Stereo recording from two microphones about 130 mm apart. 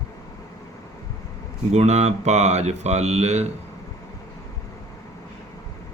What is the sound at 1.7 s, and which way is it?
Speech, 60° right (ahead or behind).